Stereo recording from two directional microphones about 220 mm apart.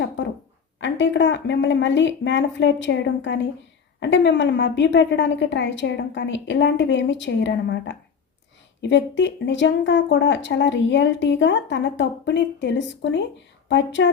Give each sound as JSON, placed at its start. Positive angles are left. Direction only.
{"t": 0.8, "sound": "speech", "side_deg": 55}